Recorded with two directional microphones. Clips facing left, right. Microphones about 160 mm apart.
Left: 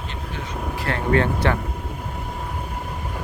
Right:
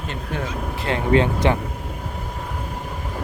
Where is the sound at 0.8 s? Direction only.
20° right (ahead or behind).